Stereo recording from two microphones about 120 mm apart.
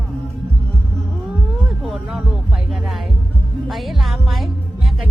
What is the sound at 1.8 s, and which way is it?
Speech, centre (ahead or behind).